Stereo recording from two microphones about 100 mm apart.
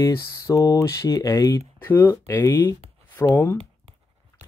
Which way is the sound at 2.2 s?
30° left (ahead or behind).